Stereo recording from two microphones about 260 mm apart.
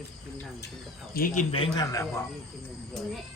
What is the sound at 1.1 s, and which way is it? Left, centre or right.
Speech, left.